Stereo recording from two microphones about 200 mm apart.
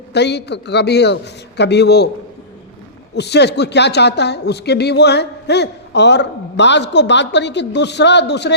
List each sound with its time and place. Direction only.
0.1 s speech: 55° left (ahead or behind)
3.2 s speech: 55° left (ahead or behind)